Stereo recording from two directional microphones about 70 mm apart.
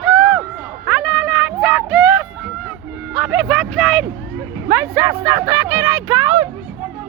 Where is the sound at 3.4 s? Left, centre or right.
Centre.